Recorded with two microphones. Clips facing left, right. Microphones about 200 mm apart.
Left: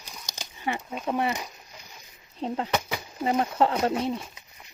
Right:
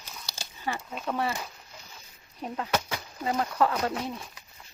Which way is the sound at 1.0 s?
20° left (ahead or behind).